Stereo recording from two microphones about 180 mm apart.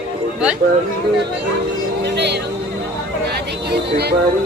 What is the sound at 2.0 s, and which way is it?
Music, 70° right (ahead or behind).